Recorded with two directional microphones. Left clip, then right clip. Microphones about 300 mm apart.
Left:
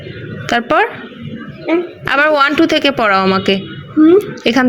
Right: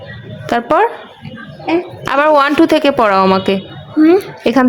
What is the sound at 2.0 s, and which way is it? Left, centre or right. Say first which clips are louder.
Speech: right 1 dB; centre.